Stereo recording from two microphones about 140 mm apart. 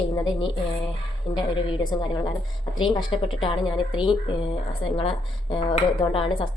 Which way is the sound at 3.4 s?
35° left (ahead or behind).